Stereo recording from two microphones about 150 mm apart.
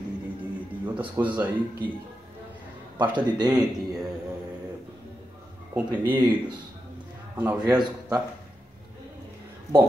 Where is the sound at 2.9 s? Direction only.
30° right (ahead or behind).